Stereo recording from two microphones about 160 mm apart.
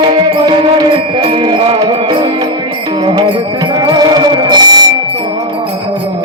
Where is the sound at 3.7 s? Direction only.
25° right (ahead or behind).